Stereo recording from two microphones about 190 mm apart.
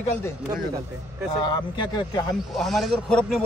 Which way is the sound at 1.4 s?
25° left (ahead or behind).